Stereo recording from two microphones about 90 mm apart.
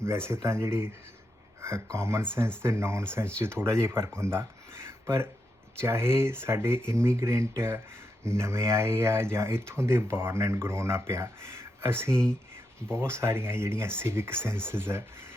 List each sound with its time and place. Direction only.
0.0 s speech: 30° right (ahead or behind)